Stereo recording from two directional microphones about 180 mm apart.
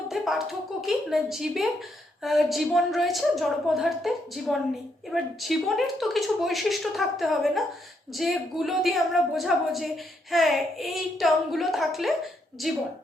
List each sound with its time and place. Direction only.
0.1 s a woman's voice: centre (ahead or behind)